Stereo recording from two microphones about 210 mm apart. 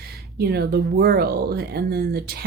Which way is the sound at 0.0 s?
50° right (ahead or behind).